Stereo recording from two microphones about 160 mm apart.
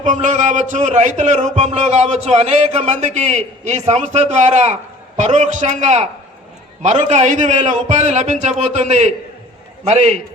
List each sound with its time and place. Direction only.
0.0 s speech: 50° right (ahead or behind)